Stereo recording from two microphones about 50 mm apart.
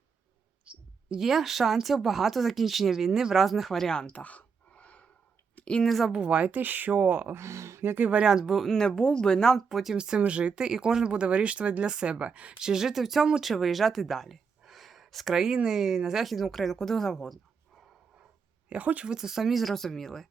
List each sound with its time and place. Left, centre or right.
0.6 s clicking: right
1.2 s speech: centre
4.1 s a sound: left
5.8 s speech: centre
6.1 s speech: right
7.3 s speech: right
7.9 s speech: right
8.2 s speech: centre
8.5 s speech: centre
9.6 s speech: centre
10.0 s speech: right; by 17.8 s centre
18.7 s speech: right
19.0 s speech: centre